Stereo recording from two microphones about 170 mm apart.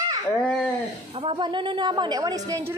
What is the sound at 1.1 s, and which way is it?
A woman's voice, 30° right (ahead or behind).